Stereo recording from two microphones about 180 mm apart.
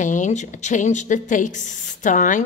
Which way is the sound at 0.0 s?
45° left (ahead or behind).